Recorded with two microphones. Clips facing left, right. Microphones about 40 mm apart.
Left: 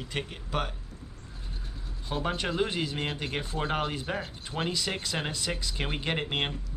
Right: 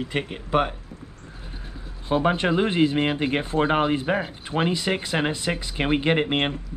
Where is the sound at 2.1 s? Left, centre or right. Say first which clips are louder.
Right 10 dB; right.